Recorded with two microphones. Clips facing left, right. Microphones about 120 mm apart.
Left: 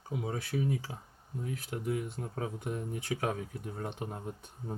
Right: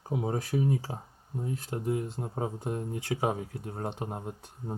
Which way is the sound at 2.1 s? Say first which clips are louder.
Right 3 dB; 15° right (ahead or behind).